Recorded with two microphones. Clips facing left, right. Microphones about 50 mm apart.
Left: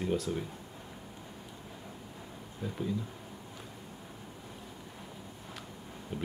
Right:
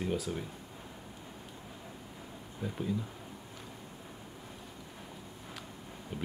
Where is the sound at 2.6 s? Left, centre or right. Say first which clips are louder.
Even; centre.